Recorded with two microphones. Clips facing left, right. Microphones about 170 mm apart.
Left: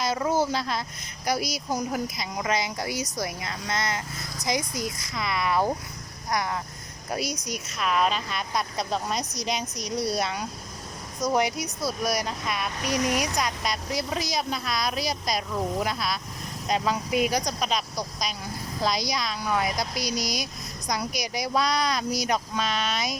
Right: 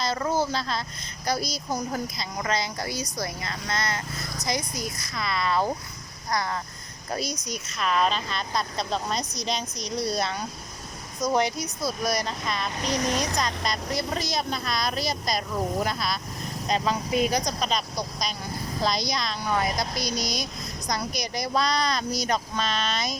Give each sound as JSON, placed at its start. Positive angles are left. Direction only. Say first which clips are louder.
{"t": 0.0, "sound": "speech", "louder": "left 1 dB", "side_deg": 10}